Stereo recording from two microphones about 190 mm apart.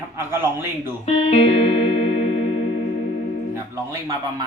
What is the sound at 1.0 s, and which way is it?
Music, 35° left (ahead or behind).